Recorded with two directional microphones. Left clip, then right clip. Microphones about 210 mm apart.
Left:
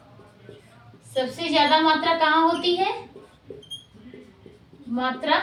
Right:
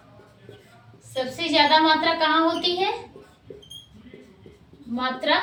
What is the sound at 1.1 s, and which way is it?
Child singing, 10° left (ahead or behind).